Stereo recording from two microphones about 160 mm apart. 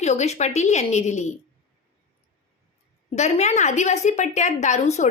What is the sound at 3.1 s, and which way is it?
A woman's voice, 45° left (ahead or behind).